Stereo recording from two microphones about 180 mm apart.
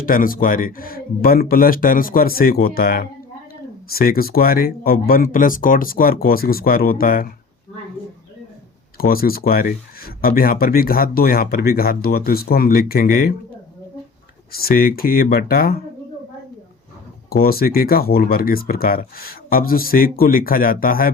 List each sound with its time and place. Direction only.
0.0 s speech: 50° left (ahead or behind)
9.0 s speech: 55° left (ahead or behind)
14.5 s speech: 55° left (ahead or behind)
17.2 s speech: 55° left (ahead or behind)